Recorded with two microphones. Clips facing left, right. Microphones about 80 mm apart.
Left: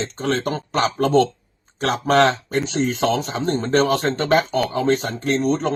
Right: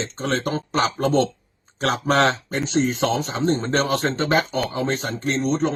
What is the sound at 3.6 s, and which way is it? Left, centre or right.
Speech, right.